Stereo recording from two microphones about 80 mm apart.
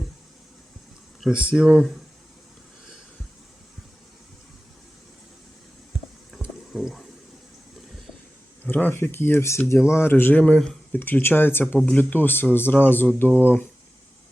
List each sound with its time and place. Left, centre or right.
1.2 s speech: centre
6.3 s a sound: centre
8.6 s speech: left
10.4 s speech: centre
10.9 s speech: left